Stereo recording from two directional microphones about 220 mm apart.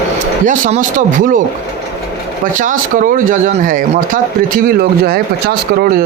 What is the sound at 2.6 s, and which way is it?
Speech, 35° right (ahead or behind).